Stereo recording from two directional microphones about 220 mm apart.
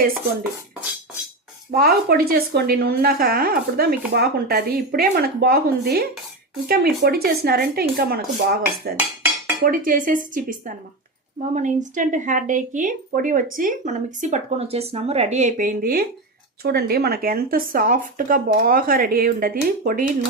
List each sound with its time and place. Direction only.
1.7 s a woman's voice: 45° right (ahead or behind)